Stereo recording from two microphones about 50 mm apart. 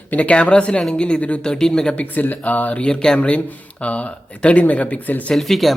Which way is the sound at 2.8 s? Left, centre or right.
Centre.